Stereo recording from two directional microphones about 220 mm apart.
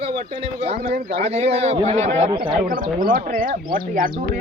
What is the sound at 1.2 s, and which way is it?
Speech, 30° right (ahead or behind).